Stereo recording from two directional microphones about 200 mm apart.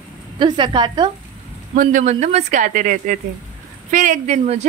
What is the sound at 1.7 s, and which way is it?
Speech, 40° right (ahead or behind).